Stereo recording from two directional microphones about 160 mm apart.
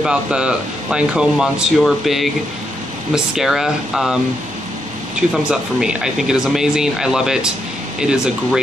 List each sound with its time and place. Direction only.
0.0 s speech: 5° right (ahead or behind)
3.3 s speech: 5° right (ahead or behind)
5.3 s speech: 5° right (ahead or behind)